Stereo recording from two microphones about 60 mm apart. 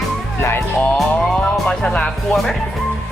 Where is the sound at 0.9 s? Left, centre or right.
Centre.